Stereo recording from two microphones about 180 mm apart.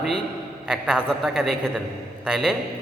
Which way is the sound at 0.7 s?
5° right (ahead or behind).